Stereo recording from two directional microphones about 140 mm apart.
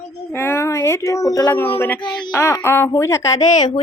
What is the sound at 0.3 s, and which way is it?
Speech, 15° left (ahead or behind).